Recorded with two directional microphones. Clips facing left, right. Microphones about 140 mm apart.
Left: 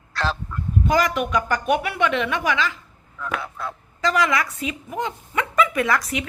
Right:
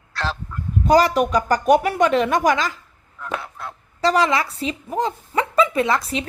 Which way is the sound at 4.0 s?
30° right (ahead or behind).